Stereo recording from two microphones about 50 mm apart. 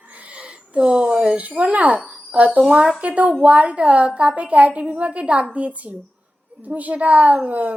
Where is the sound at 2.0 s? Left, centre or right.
Right.